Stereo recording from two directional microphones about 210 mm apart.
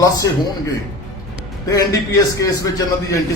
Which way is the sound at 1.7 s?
20° left (ahead or behind).